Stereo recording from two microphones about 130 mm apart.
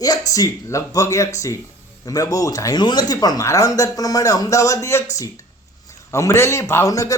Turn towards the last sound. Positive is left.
turn(degrees=25)  # may be behind; listen again after turning